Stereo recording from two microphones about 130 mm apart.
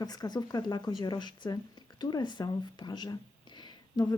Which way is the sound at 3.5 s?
35° left (ahead or behind).